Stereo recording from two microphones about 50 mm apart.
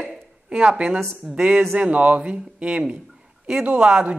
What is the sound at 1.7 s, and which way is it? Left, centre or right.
A man's voice, right.